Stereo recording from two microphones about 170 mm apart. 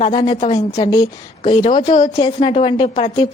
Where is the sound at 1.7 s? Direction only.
35° left (ahead or behind).